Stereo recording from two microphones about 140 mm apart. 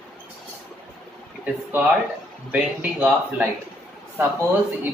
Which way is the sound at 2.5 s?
10° right (ahead or behind).